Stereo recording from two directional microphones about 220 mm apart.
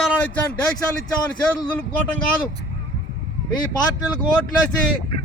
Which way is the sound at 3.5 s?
20° left (ahead or behind).